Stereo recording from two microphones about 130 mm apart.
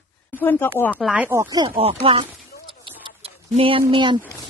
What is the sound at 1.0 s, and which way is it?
Speech, 10° right (ahead or behind).